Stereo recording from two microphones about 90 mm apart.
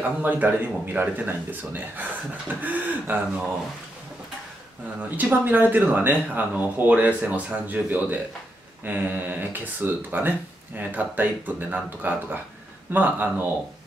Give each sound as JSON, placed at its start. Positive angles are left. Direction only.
{"t": 0.2, "sound": "speech", "side_deg": -20}
{"t": 5.1, "sound": "speech", "side_deg": -20}